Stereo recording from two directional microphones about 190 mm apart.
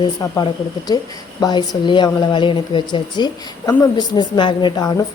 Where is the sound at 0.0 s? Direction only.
20° left (ahead or behind).